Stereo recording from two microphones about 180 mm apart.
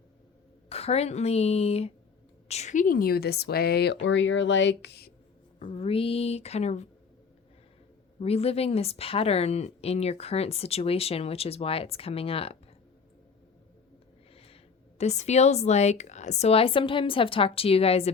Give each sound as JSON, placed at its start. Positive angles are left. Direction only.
{"t": 0.7, "sound": "a woman's voice", "side_deg": 35}
{"t": 4.0, "sound": "speech", "side_deg": 90}
{"t": 5.5, "sound": "a woman's voice", "side_deg": 30}
{"t": 8.2, "sound": "a woman's voice", "side_deg": 35}
{"t": 14.3, "sound": "speech", "side_deg": 35}